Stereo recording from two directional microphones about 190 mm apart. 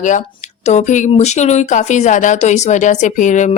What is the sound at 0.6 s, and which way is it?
Speech, 40° left (ahead or behind).